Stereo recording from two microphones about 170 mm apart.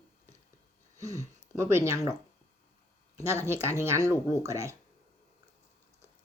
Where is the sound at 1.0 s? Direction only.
20° right (ahead or behind).